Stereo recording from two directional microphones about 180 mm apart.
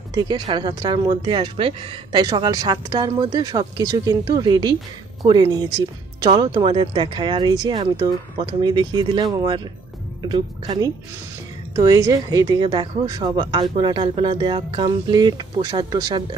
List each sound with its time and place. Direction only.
0.1 s speech: 25° right (ahead or behind)